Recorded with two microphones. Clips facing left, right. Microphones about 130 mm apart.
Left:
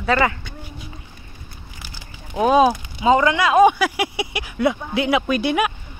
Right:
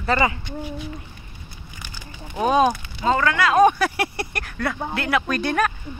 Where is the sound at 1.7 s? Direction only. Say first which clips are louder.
Right 3 dB; 10° left (ahead or behind).